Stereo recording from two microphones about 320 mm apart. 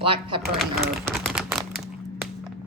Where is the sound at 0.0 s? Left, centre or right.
Centre.